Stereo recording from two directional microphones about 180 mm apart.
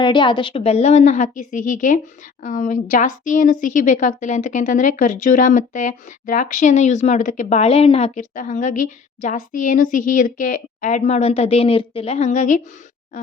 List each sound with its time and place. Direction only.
0.0 s a woman's voice: 25° left (ahead or behind); by 12.6 s 45° left (ahead or behind)